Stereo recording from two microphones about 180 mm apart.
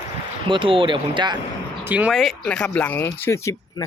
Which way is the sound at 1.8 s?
10° right (ahead or behind).